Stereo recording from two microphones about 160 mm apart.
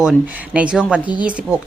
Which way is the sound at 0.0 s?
5° right (ahead or behind).